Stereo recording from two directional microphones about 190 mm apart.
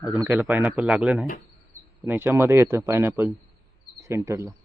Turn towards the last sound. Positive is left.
turn(degrees=-15)  # may be behind; listen again after turning